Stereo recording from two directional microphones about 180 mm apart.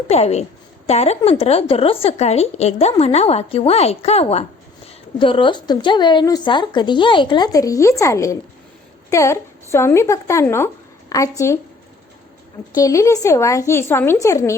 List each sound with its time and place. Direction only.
0.1 s a woman's voice: 35° left (ahead or behind); by 11.5 s 15° left (ahead or behind)
12.7 s a woman's voice: 20° left (ahead or behind)